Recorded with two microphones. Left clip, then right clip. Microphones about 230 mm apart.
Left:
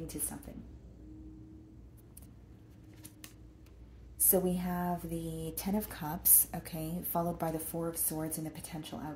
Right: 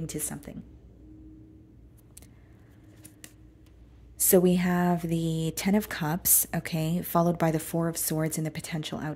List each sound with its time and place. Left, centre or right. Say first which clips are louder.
0.0 s speech: right 6 dB; right
4.3 s speech: right 10 dB; right